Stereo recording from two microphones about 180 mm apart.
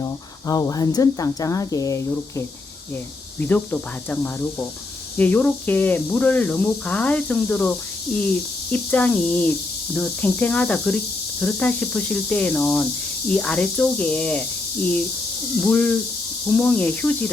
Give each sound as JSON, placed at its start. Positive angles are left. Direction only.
{"t": 0.0, "sound": "speech", "side_deg": 20}
{"t": 3.4, "sound": "speech", "side_deg": 10}
{"t": 15.6, "sound": "speech", "side_deg": 10}